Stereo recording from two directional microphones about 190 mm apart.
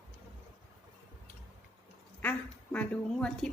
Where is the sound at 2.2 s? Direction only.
5° left (ahead or behind).